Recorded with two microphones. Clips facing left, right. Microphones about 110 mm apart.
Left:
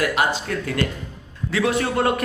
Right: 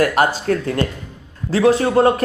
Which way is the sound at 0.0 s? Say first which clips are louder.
Right 5 dB; 45° right (ahead or behind).